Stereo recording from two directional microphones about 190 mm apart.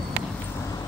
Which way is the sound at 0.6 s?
20° left (ahead or behind).